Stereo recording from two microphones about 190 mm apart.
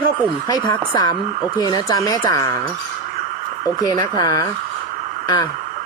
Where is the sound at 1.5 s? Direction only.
20° left (ahead or behind).